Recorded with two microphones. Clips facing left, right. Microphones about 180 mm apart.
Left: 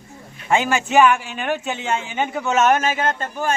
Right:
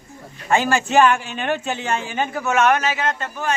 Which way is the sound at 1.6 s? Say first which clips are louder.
Even; 20° left (ahead or behind).